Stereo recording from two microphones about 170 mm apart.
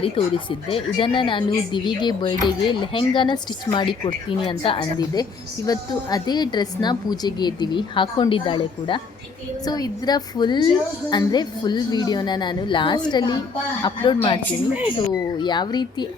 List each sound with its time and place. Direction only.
0.0 s speech: 30° left (ahead or behind)